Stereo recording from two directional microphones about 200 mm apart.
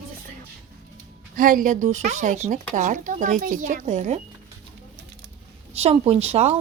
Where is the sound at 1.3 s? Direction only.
40° right (ahead or behind).